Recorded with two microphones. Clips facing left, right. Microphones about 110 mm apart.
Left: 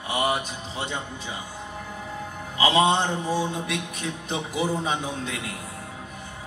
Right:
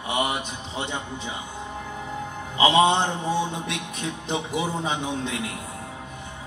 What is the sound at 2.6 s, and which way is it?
A man's voice, 25° right (ahead or behind).